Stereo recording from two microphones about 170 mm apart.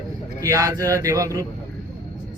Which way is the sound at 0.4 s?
20° right (ahead or behind).